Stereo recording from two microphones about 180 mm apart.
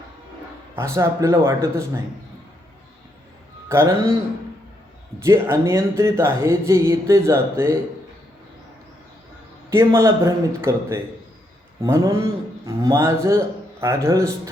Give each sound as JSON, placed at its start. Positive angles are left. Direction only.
{"t": 0.8, "sound": "speech", "side_deg": -15}
{"t": 3.7, "sound": "speech", "side_deg": -15}
{"t": 5.2, "sound": "speech", "side_deg": -15}
{"t": 9.6, "sound": "speech", "side_deg": -15}